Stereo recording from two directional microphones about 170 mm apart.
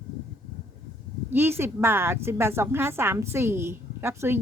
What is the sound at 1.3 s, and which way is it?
A woman's voice, 10° right (ahead or behind).